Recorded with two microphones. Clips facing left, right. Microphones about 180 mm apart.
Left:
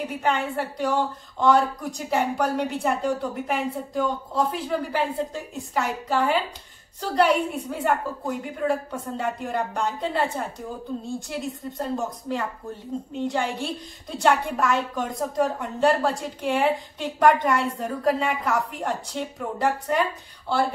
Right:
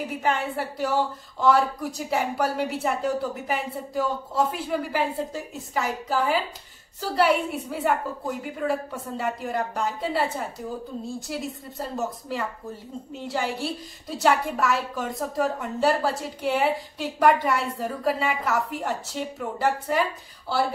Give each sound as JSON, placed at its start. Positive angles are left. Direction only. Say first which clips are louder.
{"t": 0.2, "sound": "a woman's voice", "louder": "left 1 dB", "side_deg": -5}